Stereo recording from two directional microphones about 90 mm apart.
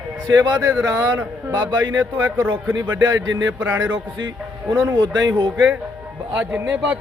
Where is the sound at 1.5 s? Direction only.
50° right (ahead or behind).